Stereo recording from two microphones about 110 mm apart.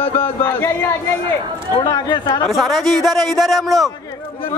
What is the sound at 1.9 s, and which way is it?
Speech, 40° left (ahead or behind).